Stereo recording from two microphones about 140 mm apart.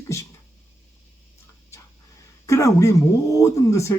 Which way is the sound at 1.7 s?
20° left (ahead or behind).